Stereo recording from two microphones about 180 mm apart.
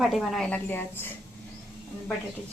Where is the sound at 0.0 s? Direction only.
Centre (ahead or behind).